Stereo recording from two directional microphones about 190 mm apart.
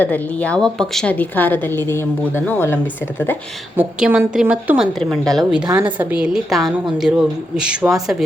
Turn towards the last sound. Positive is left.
turn(degrees=-5)  # may be behind; listen again after turning